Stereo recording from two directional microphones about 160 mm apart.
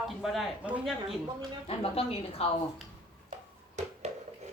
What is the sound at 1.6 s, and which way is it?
Speech, 35° left (ahead or behind).